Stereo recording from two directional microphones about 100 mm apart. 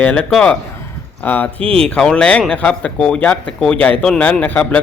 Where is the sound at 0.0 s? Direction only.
15° left (ahead or behind).